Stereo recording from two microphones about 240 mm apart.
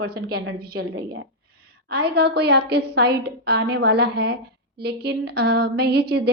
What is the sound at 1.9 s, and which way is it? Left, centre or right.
A woman's voice, right.